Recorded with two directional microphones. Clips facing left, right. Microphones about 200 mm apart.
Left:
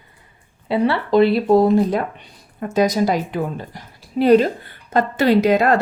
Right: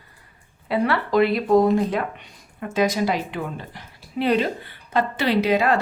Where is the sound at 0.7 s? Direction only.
25° left (ahead or behind).